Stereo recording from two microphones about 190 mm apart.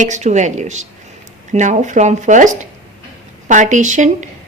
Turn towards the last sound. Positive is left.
turn(degrees=-40)  # may be behind; listen again after turning